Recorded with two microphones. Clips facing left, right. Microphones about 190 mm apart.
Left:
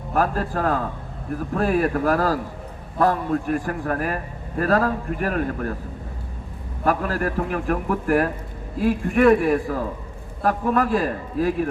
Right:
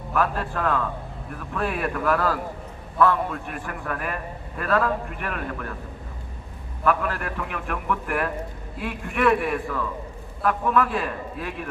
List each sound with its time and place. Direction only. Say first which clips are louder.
0.1 s a man's voice: left 3 dB; 35° left (ahead or behind)
6.8 s a man's voice: left 2 dB; 40° left (ahead or behind)